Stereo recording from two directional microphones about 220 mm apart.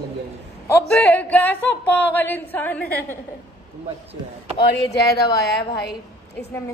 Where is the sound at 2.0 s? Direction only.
10° left (ahead or behind).